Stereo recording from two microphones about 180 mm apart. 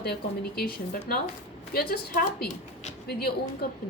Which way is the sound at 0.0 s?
60° left (ahead or behind).